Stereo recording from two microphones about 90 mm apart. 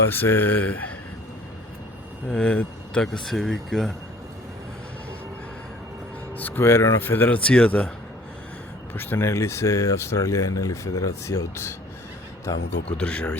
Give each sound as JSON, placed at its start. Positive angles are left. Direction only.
{"t": 0.1, "sound": "speech", "side_deg": 20}
{"t": 2.3, "sound": "speech", "side_deg": 10}
{"t": 6.3, "sound": "speech", "side_deg": 20}
{"t": 9.0, "sound": "speech", "side_deg": 25}
{"t": 13.0, "sound": "speech", "side_deg": 10}